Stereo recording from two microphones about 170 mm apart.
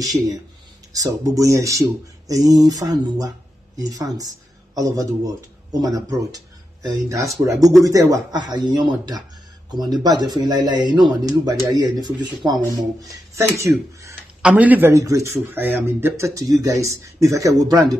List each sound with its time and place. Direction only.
0.0 s speech: 20° right (ahead or behind)
13.3 s speech: 15° right (ahead or behind)